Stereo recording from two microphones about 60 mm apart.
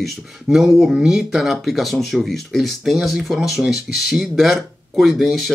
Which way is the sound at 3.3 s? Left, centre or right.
Centre.